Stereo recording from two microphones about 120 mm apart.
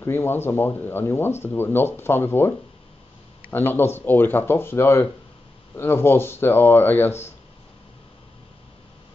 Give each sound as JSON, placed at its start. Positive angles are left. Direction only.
{"t": 0.0, "sound": "speech", "side_deg": 20}